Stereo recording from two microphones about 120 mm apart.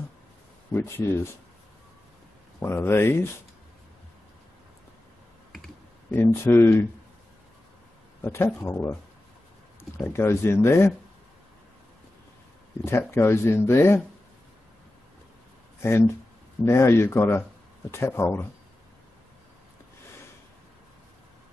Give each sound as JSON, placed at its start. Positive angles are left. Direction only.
{"t": 0.7, "sound": "speech", "side_deg": 20}
{"t": 2.6, "sound": "speech", "side_deg": 20}
{"t": 6.1, "sound": "speech", "side_deg": 20}
{"t": 8.2, "sound": "speech", "side_deg": 20}
{"t": 9.9, "sound": "speech", "side_deg": 20}
{"t": 12.8, "sound": "speech", "side_deg": 20}
{"t": 16.6, "sound": "speech", "side_deg": 25}